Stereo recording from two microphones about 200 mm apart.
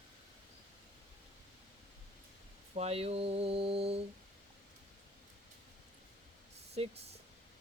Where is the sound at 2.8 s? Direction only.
30° right (ahead or behind).